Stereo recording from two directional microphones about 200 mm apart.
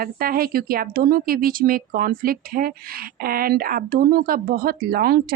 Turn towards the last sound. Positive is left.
turn(degrees=-50)  # may be behind; listen again after turning